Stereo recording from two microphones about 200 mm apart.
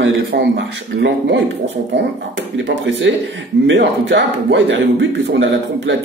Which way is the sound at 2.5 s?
65° right (ahead or behind).